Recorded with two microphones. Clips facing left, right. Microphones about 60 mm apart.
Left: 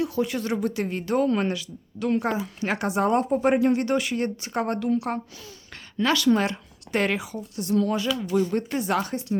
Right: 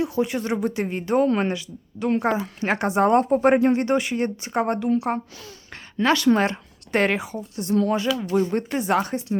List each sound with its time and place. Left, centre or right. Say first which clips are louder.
0.0 s speech: right 2 dB; right